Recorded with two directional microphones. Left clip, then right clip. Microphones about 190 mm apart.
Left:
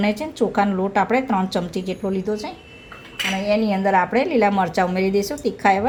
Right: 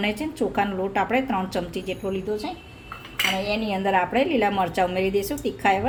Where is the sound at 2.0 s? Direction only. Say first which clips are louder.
Left 3 dB; 25° left (ahead or behind).